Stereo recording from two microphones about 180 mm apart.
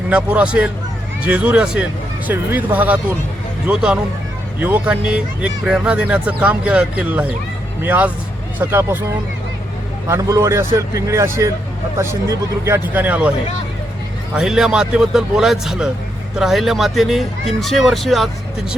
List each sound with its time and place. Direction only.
0.1 s speech: 5° right (ahead or behind)
12.6 s speech: 10° right (ahead or behind)
14.3 s speech: 5° right (ahead or behind)